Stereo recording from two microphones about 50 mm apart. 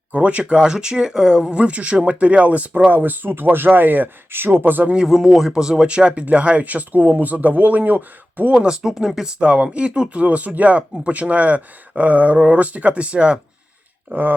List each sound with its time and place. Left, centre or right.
0.1 s speech: right
5.0 s speech: centre; by 8.5 s right
8.5 s speech: centre
9.4 s speech: right
14.1 s speech: right